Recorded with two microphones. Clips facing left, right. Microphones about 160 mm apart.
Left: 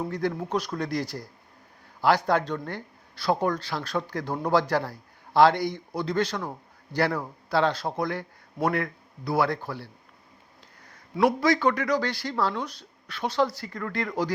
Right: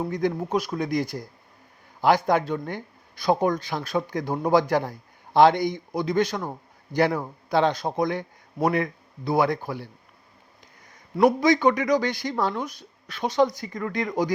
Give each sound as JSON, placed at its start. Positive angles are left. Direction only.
{"t": 0.0, "sound": "speech", "side_deg": -15}
{"t": 10.9, "sound": "speech", "side_deg": -15}